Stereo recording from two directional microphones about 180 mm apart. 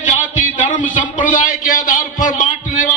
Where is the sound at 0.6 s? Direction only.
45° left (ahead or behind).